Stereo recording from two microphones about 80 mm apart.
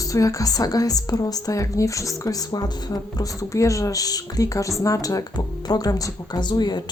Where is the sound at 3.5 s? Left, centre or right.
Left.